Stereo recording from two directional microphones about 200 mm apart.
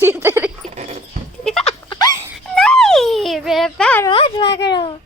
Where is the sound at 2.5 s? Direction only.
5° left (ahead or behind).